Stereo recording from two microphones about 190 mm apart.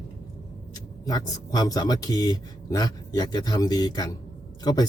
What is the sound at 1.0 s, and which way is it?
Speech, 20° left (ahead or behind).